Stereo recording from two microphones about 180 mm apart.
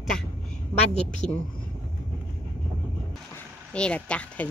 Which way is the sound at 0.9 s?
40° left (ahead or behind).